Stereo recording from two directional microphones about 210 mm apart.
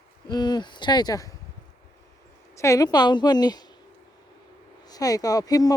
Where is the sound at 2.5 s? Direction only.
15° left (ahead or behind).